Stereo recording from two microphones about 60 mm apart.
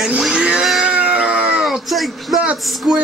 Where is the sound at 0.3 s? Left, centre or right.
Centre.